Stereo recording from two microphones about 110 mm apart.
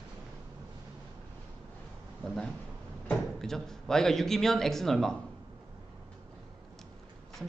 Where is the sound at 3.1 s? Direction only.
5° left (ahead or behind).